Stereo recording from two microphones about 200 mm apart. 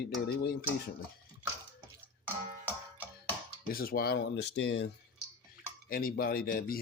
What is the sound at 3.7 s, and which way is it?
Speech, 45° left (ahead or behind).